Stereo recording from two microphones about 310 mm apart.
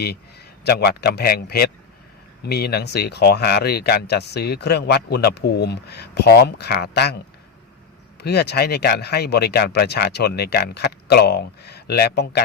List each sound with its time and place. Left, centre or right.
0.0 s a man's voice: left
8.2 s speech: left